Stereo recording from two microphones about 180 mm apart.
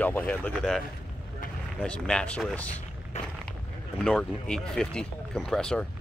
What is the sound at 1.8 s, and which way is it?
Speech, 5° left (ahead or behind).